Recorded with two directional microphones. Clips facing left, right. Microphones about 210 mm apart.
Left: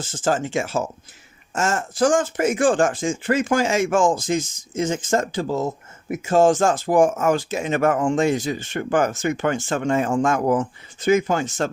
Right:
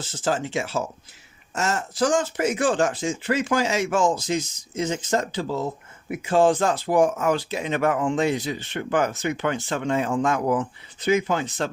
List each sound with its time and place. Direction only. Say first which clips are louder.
0.0 s speech: left 3 dB; 50° left (ahead or behind)